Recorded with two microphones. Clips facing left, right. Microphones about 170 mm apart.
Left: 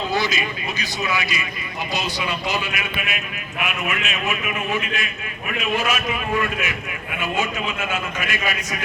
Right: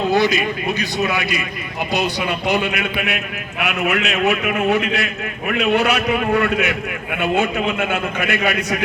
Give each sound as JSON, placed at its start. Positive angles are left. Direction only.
{"t": 0.1, "sound": "a man's voice", "side_deg": -60}